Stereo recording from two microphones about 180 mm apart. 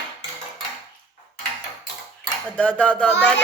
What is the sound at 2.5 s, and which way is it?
Speech, 5° left (ahead or behind).